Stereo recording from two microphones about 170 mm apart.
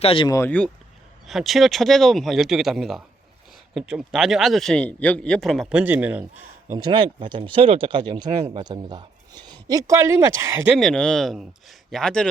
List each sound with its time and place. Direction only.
0.0 s speech: 35° left (ahead or behind)
0.3 s speech: 15° left (ahead or behind)
1.3 s a man's voice: centre (ahead or behind)
6.7 s speech: 25° right (ahead or behind)
10.7 s a man's voice: centre (ahead or behind)